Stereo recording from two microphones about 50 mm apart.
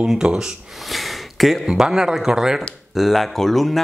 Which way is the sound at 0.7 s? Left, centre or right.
Centre.